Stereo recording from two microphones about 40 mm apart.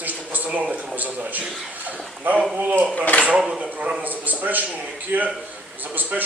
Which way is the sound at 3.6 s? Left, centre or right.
Right.